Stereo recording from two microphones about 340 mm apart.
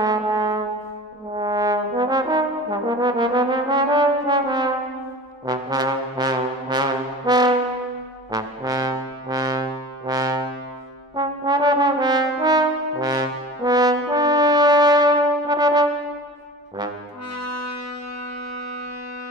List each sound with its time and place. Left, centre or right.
0.0 s brass instrument: centre
17.4 s brass instrument: left